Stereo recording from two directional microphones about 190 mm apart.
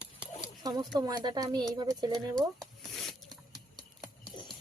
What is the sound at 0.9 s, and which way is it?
Speech, 20° right (ahead or behind).